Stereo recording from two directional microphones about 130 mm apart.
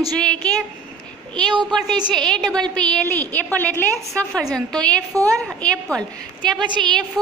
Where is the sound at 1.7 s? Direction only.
5° left (ahead or behind).